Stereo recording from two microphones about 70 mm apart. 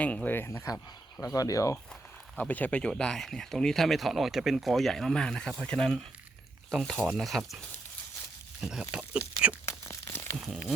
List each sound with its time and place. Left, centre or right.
0.0 s speech: centre
0.3 s speech: left
1.2 s speech: left
2.4 s speech: left; by 7.6 s centre
8.6 s speech: centre
10.3 s speech: centre